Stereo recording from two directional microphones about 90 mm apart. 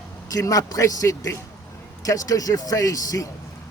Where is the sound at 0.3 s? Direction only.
40° left (ahead or behind).